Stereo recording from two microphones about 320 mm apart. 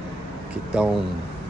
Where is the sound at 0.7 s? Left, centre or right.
Centre.